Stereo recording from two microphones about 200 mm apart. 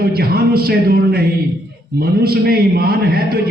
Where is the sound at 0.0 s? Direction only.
50° right (ahead or behind).